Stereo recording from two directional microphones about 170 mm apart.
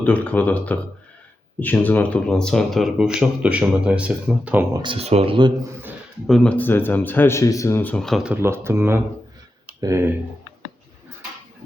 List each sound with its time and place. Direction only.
0.0 s speech: 10° left (ahead or behind); by 4.6 s 5° right (ahead or behind)
4.7 s speech: 30° right (ahead or behind)
6.2 s speech: 5° left (ahead or behind); by 10.1 s 15° right (ahead or behind)